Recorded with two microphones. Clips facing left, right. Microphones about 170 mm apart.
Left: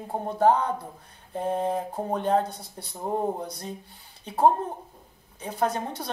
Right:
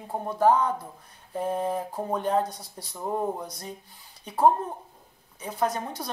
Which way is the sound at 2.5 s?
55° left (ahead or behind).